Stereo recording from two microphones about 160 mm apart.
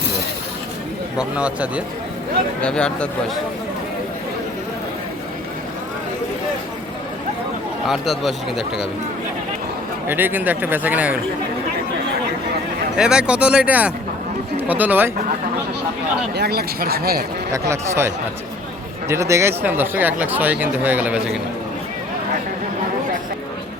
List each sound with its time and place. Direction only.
1.2 s speech: 5° right (ahead or behind)
2.6 s speech: 5° left (ahead or behind)
7.9 s speech: centre (ahead or behind)
10.1 s speech: 10° right (ahead or behind)
13.0 s speech: 5° right (ahead or behind)
16.3 s speech: 85° right
17.5 s speech: 20° right (ahead or behind)